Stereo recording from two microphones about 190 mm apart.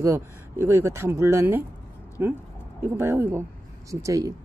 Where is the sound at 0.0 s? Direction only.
15° right (ahead or behind).